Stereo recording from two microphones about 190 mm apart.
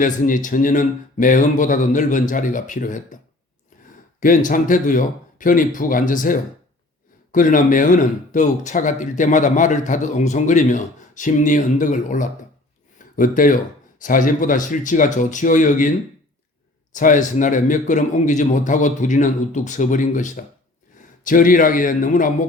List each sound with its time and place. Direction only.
0.0 s speech: 45° left (ahead or behind)
4.2 s speech: 45° left (ahead or behind)